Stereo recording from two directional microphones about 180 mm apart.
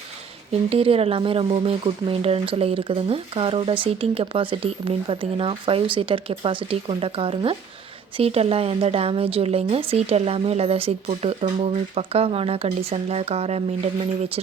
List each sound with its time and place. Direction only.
0.7 s speech: 30° right (ahead or behind)